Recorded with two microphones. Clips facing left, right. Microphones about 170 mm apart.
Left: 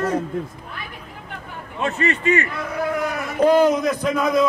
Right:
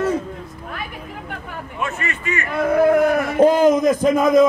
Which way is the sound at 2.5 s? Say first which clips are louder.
Right 10 dB; 55° right (ahead or behind).